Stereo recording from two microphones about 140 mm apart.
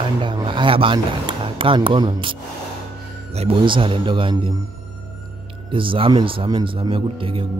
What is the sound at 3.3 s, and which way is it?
Speech, 45° right (ahead or behind).